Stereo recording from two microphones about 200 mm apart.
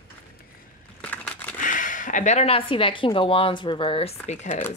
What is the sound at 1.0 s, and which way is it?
Crushing, 10° left (ahead or behind).